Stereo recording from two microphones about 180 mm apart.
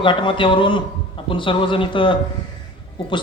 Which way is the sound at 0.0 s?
25° left (ahead or behind).